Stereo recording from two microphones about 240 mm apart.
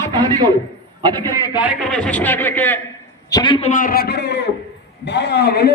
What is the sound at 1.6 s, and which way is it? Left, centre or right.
A man's voice, centre.